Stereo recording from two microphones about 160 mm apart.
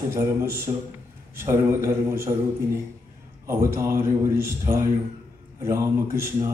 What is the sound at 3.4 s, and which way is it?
A man's voice, 15° right (ahead or behind).